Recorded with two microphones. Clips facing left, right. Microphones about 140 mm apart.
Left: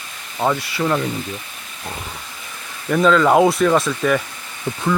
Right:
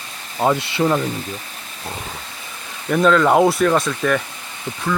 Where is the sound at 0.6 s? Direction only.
25° right (ahead or behind).